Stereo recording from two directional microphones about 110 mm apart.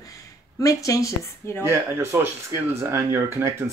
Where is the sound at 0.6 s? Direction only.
30° left (ahead or behind).